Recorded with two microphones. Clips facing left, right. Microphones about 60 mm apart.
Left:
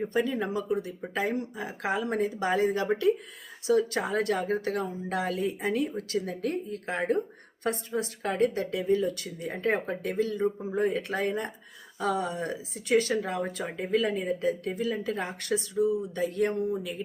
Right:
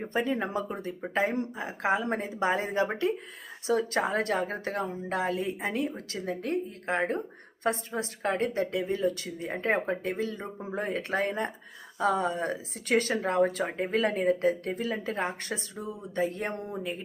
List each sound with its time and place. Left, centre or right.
0.1 s speech: right